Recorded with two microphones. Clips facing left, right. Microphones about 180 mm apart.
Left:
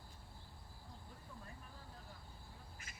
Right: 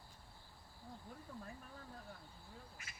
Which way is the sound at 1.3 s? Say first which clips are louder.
Right 5 dB; 55° right (ahead or behind).